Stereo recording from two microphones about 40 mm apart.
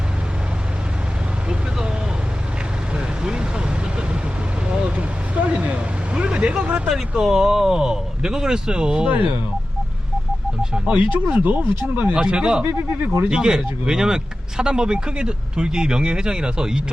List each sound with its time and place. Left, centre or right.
2.9 s vehicle: right
4.7 s vehicle: right
6.2 s vehicle: right
7.1 s speech: centre
9.0 s speech: right
10.8 s speech: right
11.3 s speech: right
12.1 s speech: right
12.6 s speech: right
13.3 s speech: centre